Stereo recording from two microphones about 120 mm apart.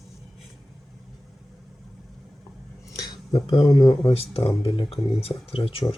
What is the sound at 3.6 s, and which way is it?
Speech, 35° left (ahead or behind).